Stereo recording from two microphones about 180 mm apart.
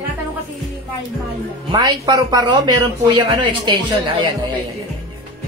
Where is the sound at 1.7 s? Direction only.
20° right (ahead or behind).